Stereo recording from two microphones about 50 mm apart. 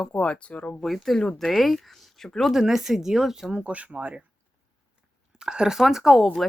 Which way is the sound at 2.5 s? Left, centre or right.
Centre.